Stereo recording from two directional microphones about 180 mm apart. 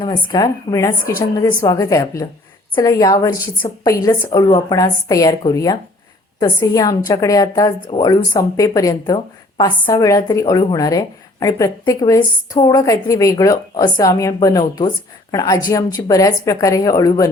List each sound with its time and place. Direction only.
0.0 s a woman's voice: 20° left (ahead or behind)